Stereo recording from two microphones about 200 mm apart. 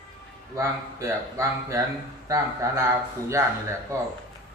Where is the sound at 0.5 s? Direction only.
15° right (ahead or behind).